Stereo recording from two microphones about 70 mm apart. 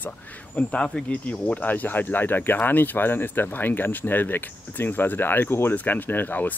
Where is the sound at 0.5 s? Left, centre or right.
Centre.